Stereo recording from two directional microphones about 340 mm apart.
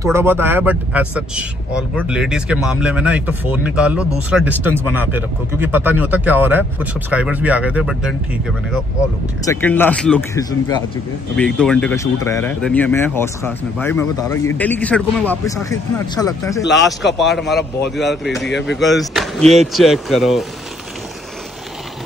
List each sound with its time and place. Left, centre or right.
0.0 s speech: centre
16.6 s speech: left
17.0 s speech: centre